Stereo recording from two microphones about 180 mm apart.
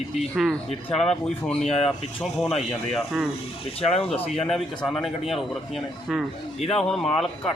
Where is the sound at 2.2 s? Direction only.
Centre (ahead or behind).